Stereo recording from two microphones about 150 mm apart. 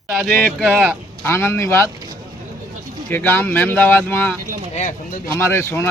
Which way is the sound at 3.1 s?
15° left (ahead or behind).